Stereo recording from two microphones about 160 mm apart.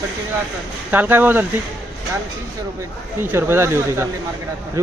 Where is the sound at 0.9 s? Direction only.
10° right (ahead or behind).